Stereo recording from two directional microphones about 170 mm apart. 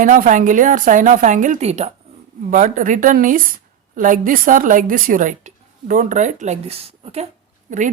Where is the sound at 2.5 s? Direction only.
50° right (ahead or behind).